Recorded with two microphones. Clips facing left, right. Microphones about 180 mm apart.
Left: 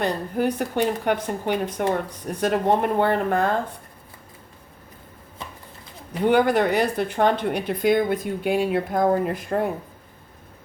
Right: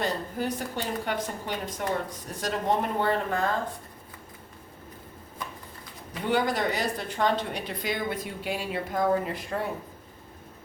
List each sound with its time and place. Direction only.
0.3 s speech: 60° left (ahead or behind)
6.2 s speech: 60° left (ahead or behind)